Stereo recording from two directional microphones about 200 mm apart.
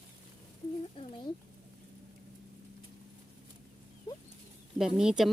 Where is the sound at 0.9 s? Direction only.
25° left (ahead or behind).